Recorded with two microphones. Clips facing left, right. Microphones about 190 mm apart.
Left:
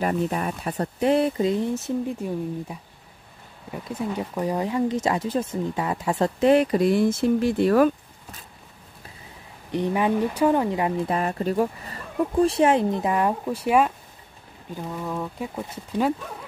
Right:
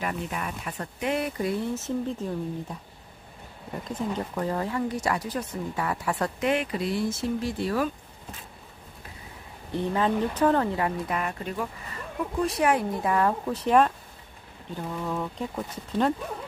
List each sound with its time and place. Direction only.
0.0 s speech: 35° left (ahead or behind)
6.5 s speech: 40° left (ahead or behind); by 7.9 s 60° left (ahead or behind)
9.7 s speech: 15° left (ahead or behind)
11.1 s speech: 35° left (ahead or behind); by 15.6 s 10° left (ahead or behind)